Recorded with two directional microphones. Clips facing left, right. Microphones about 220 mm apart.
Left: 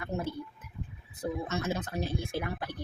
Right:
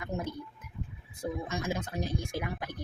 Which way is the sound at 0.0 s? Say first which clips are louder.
Left 1 dB; 15° right (ahead or behind).